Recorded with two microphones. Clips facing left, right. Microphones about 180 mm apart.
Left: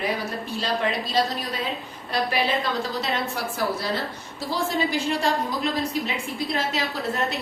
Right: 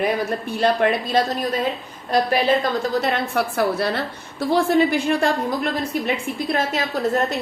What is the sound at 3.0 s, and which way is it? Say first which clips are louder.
A woman's voice: right 6 dB; 60° right (ahead or behind).